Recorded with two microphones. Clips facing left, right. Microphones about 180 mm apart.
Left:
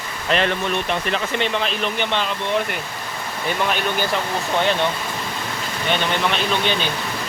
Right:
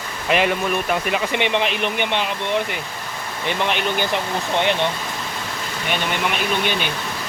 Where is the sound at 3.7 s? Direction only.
20° right (ahead or behind).